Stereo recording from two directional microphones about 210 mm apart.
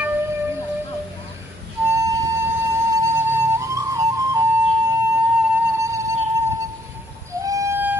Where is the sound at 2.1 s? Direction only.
15° right (ahead or behind).